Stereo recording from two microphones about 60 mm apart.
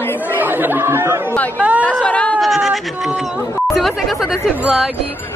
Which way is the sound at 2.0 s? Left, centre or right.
Left.